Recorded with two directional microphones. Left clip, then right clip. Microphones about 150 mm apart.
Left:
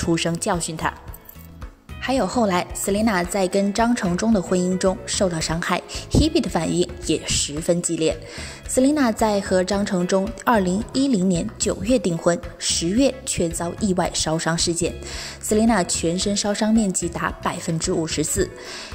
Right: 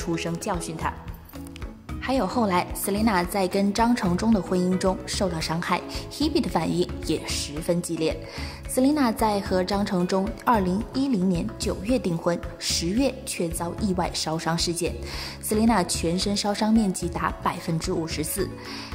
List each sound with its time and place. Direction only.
0.0 s a woman's voice: 30° left (ahead or behind)
2.0 s a woman's voice: 15° left (ahead or behind)